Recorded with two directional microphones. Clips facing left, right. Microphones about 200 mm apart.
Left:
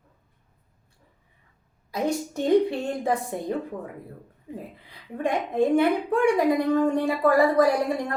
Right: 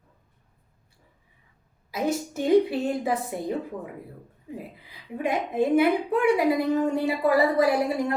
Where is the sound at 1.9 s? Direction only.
5° right (ahead or behind).